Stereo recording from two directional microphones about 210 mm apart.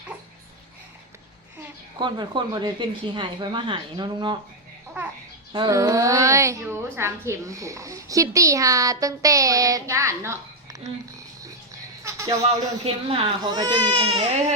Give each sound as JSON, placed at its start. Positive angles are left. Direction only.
{"t": 2.0, "sound": "speech", "side_deg": -20}
{"t": 5.5, "sound": "a woman's voice", "side_deg": -15}
{"t": 12.0, "sound": "a man's voice", "side_deg": -15}
{"t": 12.8, "sound": "speech", "side_deg": -25}